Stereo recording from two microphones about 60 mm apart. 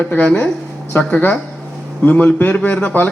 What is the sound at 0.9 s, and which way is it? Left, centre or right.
A man's voice, left.